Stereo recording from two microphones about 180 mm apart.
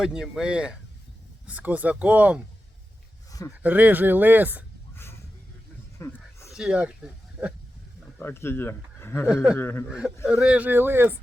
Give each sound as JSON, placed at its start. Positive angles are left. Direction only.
{"t": 0.0, "sound": "speech", "side_deg": -5}
{"t": 3.6, "sound": "speech", "side_deg": -10}
{"t": 6.0, "sound": "a sound", "side_deg": 15}
{"t": 6.6, "sound": "speech", "side_deg": -5}
{"t": 8.2, "sound": "speech", "side_deg": 15}
{"t": 9.3, "sound": "speech", "side_deg": -5}
{"t": 9.6, "sound": "speech", "side_deg": 15}
{"t": 10.0, "sound": "speech", "side_deg": 0}